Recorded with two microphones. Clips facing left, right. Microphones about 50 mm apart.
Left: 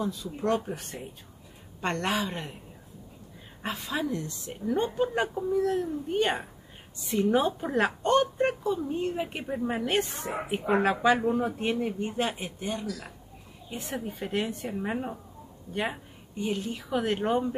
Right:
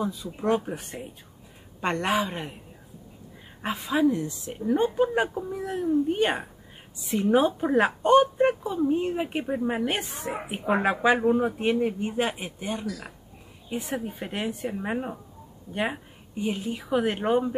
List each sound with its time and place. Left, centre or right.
0.0 s a child's voice: centre
3.6 s a child's voice: centre